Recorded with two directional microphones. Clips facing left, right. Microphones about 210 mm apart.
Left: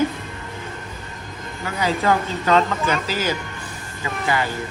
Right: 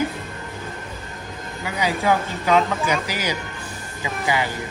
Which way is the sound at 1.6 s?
10° right (ahead or behind).